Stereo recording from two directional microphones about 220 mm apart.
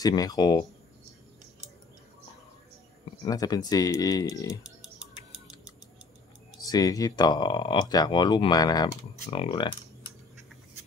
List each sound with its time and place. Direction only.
0.0 s speech: 15° left (ahead or behind)
3.3 s speech: 15° left (ahead or behind)
6.7 s speech: 15° left (ahead or behind)